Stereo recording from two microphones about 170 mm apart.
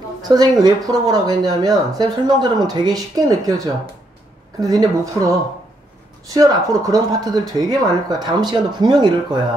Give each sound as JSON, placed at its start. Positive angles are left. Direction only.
{"t": 0.2, "sound": "speech", "side_deg": -25}